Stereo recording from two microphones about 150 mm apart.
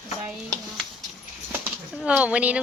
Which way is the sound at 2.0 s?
10° right (ahead or behind).